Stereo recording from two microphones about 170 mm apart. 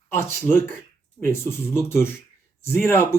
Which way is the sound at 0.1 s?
15° left (ahead or behind).